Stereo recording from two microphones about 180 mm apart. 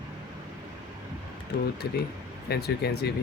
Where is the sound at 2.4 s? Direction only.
60° left (ahead or behind).